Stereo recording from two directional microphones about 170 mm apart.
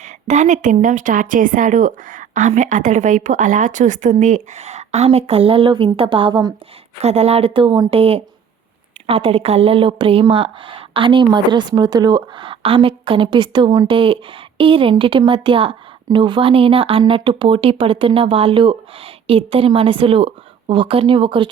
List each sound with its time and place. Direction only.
0.0 s speech: 45° right (ahead or behind); by 6.5 s 30° right (ahead or behind)
7.0 s speech: 40° right (ahead or behind)